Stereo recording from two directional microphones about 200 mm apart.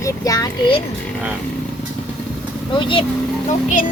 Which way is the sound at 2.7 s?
25° left (ahead or behind).